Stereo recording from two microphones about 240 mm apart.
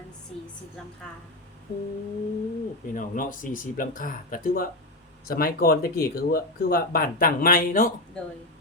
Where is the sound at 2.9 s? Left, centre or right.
Left.